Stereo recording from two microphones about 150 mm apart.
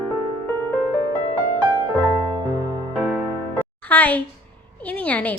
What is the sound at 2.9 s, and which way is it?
Music, 10° right (ahead or behind).